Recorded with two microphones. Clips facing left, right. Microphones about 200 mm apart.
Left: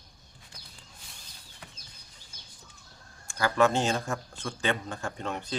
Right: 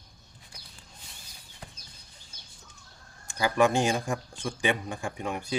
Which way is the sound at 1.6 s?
30° right (ahead or behind).